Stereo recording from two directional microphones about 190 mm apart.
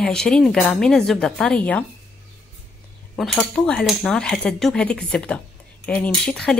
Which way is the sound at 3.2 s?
5° left (ahead or behind).